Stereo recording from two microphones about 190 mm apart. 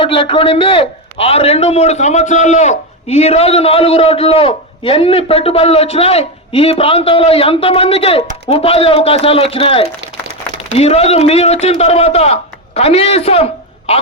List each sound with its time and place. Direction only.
0.0 s a man's voice: 30° left (ahead or behind)